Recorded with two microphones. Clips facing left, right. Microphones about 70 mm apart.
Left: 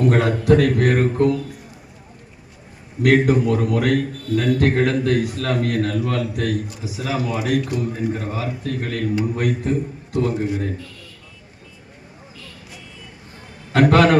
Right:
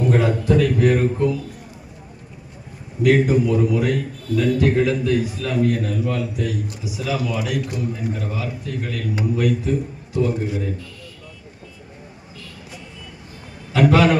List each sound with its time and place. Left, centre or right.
0.0 s a man's voice: left
3.0 s a man's voice: left
6.8 s a man's voice: left
13.7 s a man's voice: left